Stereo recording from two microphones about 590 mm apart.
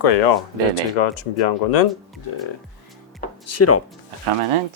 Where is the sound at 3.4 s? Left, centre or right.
Left.